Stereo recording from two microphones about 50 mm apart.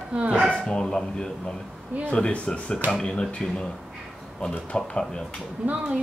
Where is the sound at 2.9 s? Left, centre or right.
Centre.